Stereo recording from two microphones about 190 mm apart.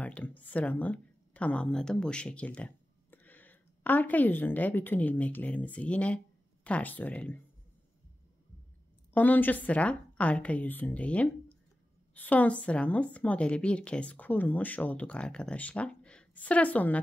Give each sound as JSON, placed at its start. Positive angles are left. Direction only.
{"t": 0.0, "sound": "speech", "side_deg": 10}
{"t": 9.1, "sound": "a woman's voice", "side_deg": 10}